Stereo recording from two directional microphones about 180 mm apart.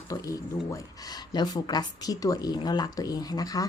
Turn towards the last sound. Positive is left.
turn(degrees=20)  # may be behind; listen again after turning